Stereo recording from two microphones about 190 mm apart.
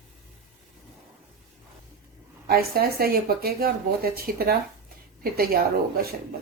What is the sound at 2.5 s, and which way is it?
Speech, 55° right (ahead or behind).